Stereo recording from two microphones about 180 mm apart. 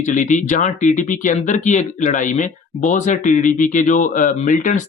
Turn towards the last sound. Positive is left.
turn(degrees=45)  # may be behind; listen again after turning